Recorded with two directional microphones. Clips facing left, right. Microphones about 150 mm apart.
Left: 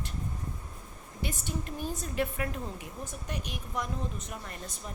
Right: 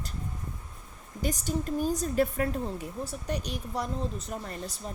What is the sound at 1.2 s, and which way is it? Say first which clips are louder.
A woman's voice: right 6 dB; 40° right (ahead or behind).